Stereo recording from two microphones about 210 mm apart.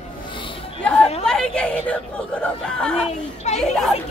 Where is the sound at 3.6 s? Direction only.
Centre (ahead or behind).